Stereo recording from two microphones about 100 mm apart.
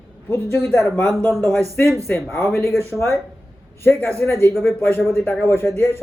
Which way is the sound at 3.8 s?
20° left (ahead or behind).